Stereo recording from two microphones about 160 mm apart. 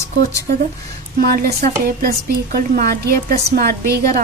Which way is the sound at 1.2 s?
70° right (ahead or behind).